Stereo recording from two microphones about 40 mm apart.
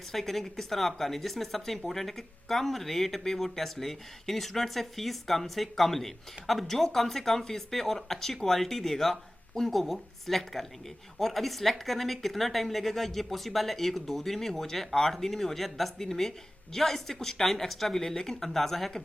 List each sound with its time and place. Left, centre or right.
0.1 s a woman's voice: centre